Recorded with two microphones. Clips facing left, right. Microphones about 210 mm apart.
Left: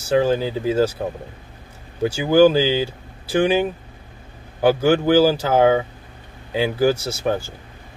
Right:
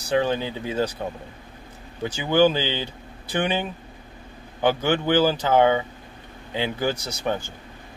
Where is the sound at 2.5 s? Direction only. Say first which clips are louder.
Left 8 dB; 10° left (ahead or behind).